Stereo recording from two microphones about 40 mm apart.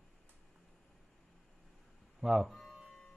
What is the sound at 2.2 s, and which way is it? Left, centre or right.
Speech, centre.